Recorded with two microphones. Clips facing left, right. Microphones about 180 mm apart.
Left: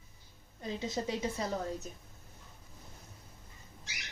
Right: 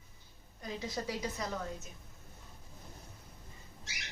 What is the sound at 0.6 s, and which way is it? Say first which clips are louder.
A woman's voice: left 3 dB; 25° left (ahead or behind).